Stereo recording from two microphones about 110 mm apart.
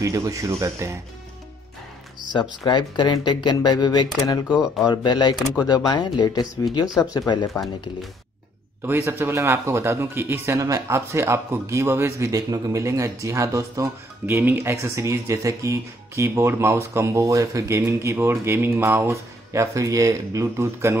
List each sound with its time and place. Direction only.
0.0 s speech: 30° right (ahead or behind)
2.3 s speech: 45° left (ahead or behind)
8.8 s speech: 20° right (ahead or behind)
14.2 s speech: 15° right (ahead or behind)